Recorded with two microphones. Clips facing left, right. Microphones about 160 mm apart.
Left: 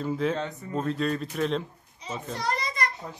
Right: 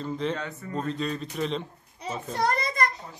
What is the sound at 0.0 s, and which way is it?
Speech, 5° left (ahead or behind).